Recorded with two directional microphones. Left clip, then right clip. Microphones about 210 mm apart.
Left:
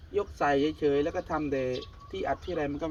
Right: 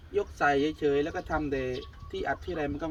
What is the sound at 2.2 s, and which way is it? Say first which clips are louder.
Speech: left 1 dB; 5° right (ahead or behind).